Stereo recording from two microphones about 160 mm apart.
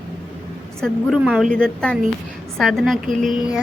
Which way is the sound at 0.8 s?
5° left (ahead or behind).